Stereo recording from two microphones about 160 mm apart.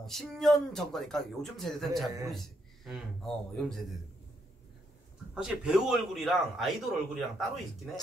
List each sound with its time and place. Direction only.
0.0 s a man's voice: centre (ahead or behind)
5.3 s a man's voice: 5° right (ahead or behind)